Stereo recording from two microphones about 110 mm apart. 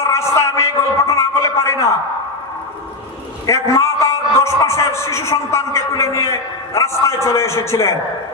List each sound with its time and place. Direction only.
0.0 s a man's voice: 25° left (ahead or behind)
3.4 s a man's voice: 30° left (ahead or behind)